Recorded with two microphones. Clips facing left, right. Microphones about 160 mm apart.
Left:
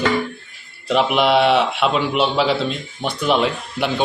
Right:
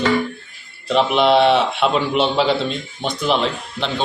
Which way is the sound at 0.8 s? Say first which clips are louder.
Right 1 dB; 5° left (ahead or behind).